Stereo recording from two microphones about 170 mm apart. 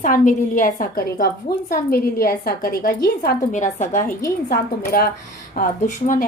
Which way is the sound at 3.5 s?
45° left (ahead or behind).